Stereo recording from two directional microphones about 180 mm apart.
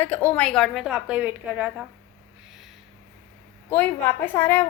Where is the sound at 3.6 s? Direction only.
10° left (ahead or behind).